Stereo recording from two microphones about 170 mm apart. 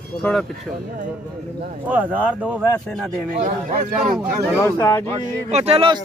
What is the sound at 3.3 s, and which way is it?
Speech, 50° right (ahead or behind).